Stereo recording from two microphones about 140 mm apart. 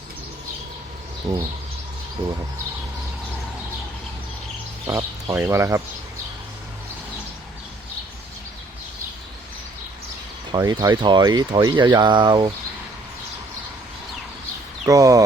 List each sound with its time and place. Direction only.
1.3 s speech: 25° right (ahead or behind)
4.9 s speech: 15° right (ahead or behind)
10.6 s speech: 30° right (ahead or behind)
14.8 s speech: 25° right (ahead or behind)